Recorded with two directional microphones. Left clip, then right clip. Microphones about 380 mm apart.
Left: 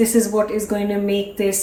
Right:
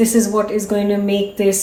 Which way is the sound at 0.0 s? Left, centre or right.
Centre.